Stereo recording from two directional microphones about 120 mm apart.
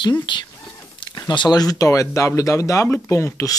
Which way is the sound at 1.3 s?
35° left (ahead or behind).